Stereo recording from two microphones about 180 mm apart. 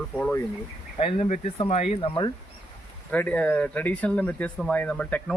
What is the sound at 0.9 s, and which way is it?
Speech, 35° left (ahead or behind).